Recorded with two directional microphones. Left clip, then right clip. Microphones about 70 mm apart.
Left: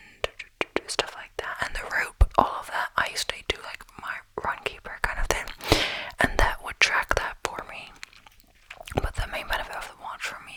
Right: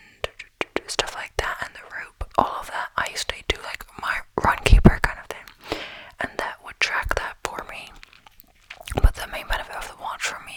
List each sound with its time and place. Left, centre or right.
0.2 s whispering: centre
1.4 s whispering: right
1.7 s whispering: left
2.3 s whispering: centre; by 4.9 s right
5.2 s whispering: left; by 6.7 s centre
6.7 s whispering: centre
9.3 s whispering: centre
9.8 s whispering: right